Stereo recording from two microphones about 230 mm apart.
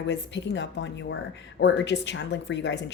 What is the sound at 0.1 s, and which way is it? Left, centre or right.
Speech, left.